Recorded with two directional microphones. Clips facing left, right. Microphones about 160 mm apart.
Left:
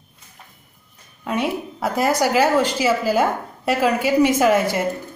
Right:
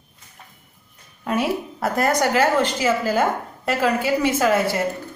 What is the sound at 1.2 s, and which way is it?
A woman's voice, centre (ahead or behind).